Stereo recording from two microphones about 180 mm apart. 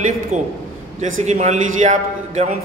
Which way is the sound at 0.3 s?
40° right (ahead or behind).